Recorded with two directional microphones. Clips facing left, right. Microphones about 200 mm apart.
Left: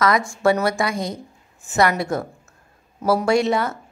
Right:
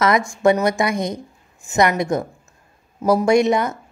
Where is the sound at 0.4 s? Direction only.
20° right (ahead or behind).